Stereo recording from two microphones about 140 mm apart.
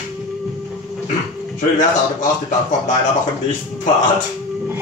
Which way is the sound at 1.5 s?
65° left (ahead or behind).